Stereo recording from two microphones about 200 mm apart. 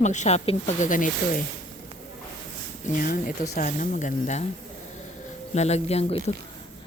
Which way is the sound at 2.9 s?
45° left (ahead or behind).